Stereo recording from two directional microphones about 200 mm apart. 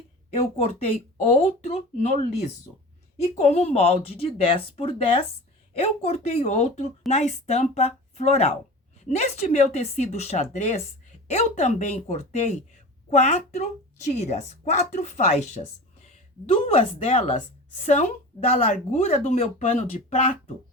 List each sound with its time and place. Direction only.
0.3 s speech: 30° left (ahead or behind)